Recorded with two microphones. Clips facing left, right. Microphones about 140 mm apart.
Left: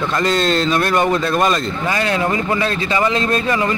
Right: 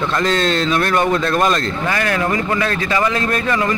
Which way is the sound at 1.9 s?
20° left (ahead or behind).